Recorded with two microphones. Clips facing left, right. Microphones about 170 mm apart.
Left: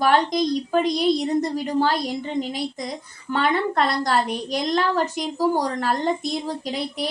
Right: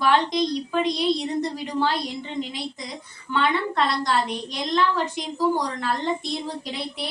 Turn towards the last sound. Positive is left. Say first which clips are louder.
# left 3 dB
turn(degrees=45)  # may be behind; listen again after turning